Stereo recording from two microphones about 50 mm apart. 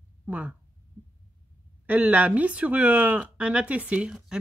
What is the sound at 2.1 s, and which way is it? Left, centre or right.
Speech, right.